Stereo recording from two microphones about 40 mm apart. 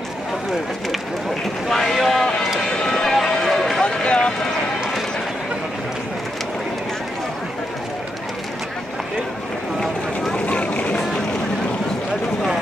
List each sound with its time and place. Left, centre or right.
1.7 s a sound: centre
2.9 s run: centre
3.8 s run: left
10.3 s boat: left